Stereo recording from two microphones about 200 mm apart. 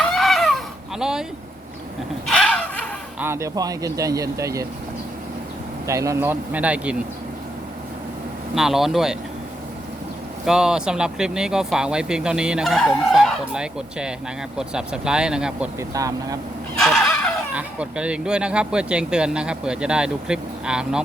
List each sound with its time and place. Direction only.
0.1 s a sound: centre (ahead or behind)
2.2 s a sound: 5° left (ahead or behind)
3.2 s speech: 10° right (ahead or behind)
5.9 s speech: 15° right (ahead or behind)
8.5 s speech: centre (ahead or behind)
10.4 s speech: 5° right (ahead or behind)
15.9 s speech: 15° right (ahead or behind)
16.8 s a sound: centre (ahead or behind)
17.5 s speech: 5° right (ahead or behind)